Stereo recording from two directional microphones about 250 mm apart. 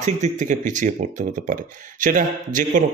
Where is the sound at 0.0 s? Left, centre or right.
Right.